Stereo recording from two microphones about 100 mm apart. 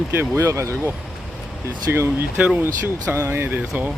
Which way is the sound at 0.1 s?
25° right (ahead or behind).